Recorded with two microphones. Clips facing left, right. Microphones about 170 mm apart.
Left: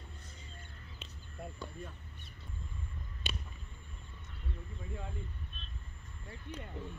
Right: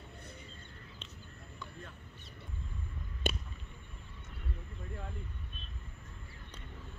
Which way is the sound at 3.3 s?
45° right (ahead or behind).